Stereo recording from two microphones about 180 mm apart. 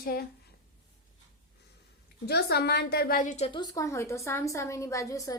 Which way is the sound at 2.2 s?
65° left (ahead or behind).